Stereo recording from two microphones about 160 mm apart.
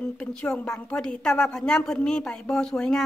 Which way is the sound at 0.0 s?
5° left (ahead or behind).